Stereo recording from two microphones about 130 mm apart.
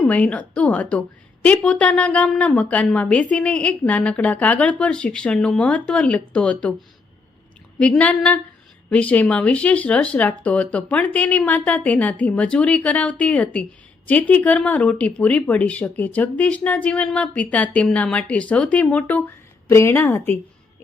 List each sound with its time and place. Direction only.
0.1 s speech: 10° left (ahead or behind)
7.8 s a woman's voice: 10° left (ahead or behind)